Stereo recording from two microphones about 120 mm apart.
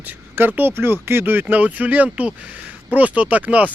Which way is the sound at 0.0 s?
15° right (ahead or behind).